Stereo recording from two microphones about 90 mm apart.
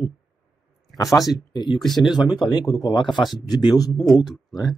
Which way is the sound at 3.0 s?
60° left (ahead or behind).